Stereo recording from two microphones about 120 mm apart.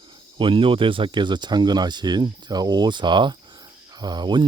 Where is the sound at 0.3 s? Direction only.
45° right (ahead or behind).